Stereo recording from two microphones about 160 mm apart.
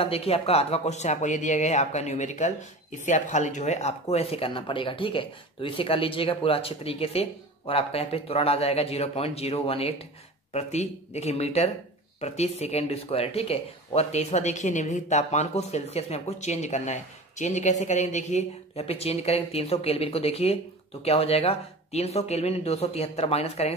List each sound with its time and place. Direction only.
0.0 s speech: 40° left (ahead or behind)